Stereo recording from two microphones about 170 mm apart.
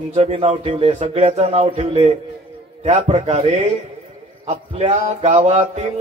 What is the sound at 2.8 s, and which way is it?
Music, 45° right (ahead or behind).